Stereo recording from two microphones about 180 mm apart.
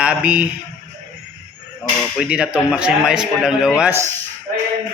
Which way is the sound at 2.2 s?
5° right (ahead or behind).